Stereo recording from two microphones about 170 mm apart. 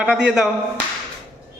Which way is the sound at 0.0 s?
5° right (ahead or behind).